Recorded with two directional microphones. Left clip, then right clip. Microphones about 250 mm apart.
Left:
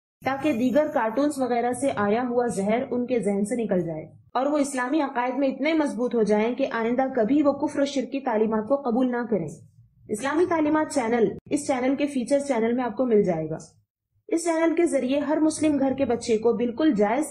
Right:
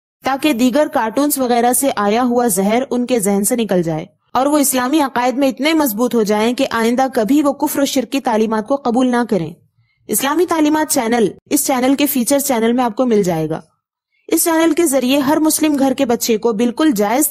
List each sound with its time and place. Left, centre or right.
0.2 s a woman's voice: right